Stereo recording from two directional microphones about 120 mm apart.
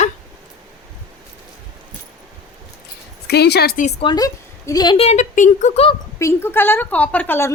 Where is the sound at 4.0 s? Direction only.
40° left (ahead or behind).